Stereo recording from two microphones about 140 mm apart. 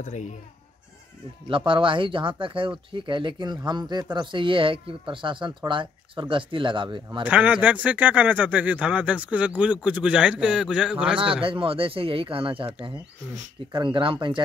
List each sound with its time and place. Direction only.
1.5 s speech: 35° right (ahead or behind)
7.2 s speech: 10° right (ahead or behind)
11.4 s speech: 40° right (ahead or behind)
13.7 s speech: 35° right (ahead or behind)